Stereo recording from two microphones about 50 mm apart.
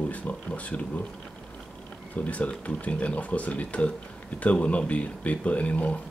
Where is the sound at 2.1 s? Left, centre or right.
Left.